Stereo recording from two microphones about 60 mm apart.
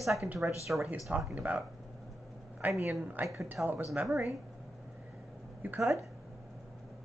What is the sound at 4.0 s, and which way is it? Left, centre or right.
Speech, right.